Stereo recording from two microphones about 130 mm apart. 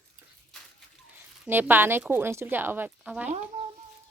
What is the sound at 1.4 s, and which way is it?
A woman's voice, 15° right (ahead or behind).